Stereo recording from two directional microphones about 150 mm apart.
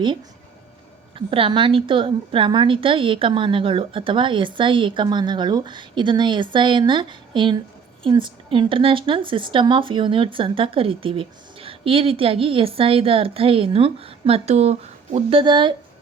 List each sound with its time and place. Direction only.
1.1 s speech: 35° right (ahead or behind)